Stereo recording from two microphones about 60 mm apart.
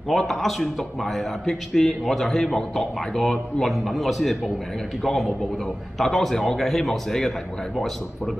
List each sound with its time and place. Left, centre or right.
0.1 s a man's voice: centre